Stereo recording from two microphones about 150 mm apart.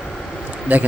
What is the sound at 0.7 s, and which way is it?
Speech, 10° right (ahead or behind).